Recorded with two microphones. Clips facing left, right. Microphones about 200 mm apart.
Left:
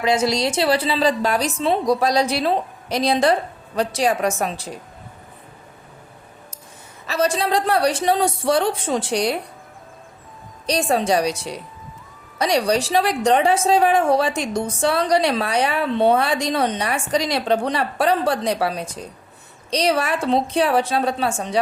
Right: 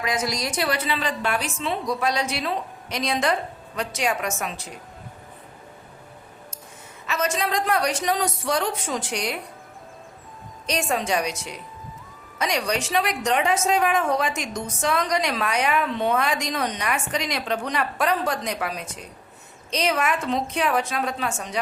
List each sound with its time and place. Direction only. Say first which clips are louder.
0.0 s a woman's voice: left 7 dB; 30° left (ahead or behind)
7.1 s a woman's voice: left 5 dB; 35° left (ahead or behind)
10.7 s a woman's voice: left 6 dB; 35° left (ahead or behind)